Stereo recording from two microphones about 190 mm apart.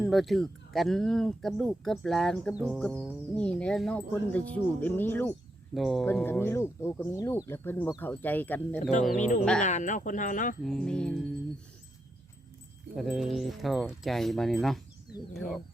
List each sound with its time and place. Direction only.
0.0 s speech: centre (ahead or behind)
5.7 s speech: centre (ahead or behind)
9.1 s speech: 40° left (ahead or behind)
10.6 s speech: centre (ahead or behind)
13.0 s speech: centre (ahead or behind)